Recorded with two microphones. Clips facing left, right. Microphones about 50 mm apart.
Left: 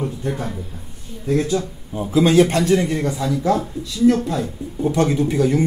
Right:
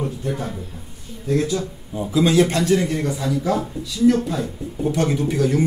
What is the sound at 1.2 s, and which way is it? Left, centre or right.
Speech, left.